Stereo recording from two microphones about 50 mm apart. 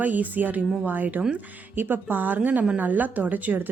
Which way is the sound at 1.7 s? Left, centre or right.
Right.